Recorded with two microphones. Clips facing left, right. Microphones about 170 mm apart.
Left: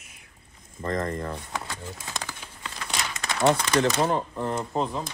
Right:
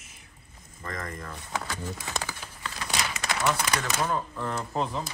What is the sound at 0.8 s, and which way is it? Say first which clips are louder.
Speech: left 9 dB; 30° left (ahead or behind).